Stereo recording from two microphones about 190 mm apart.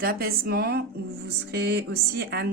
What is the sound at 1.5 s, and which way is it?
Music, 60° right (ahead or behind).